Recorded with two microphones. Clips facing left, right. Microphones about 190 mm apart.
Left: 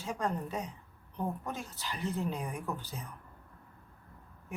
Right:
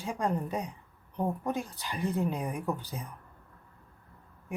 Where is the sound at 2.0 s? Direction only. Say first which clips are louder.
Right 5 dB; 55° right (ahead or behind).